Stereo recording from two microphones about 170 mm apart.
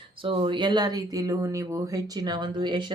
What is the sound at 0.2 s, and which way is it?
A woman's voice, 30° right (ahead or behind).